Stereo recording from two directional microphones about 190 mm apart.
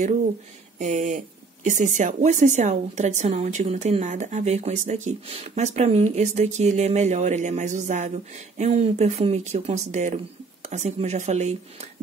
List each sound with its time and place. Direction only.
0.7 s speech: 40° right (ahead or behind)